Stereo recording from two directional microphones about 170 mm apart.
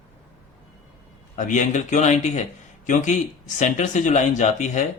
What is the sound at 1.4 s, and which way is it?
Speech, 50° left (ahead or behind).